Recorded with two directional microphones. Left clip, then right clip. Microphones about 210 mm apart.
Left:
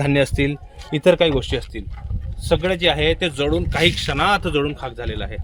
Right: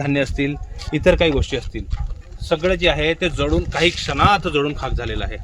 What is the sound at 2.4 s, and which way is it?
Speech, 40° left (ahead or behind).